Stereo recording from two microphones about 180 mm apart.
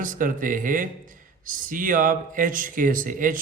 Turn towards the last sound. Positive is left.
turn(degrees=-45)  # may be behind; listen again after turning